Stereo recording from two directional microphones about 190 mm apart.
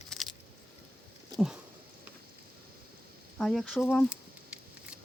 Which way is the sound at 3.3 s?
Centre (ahead or behind).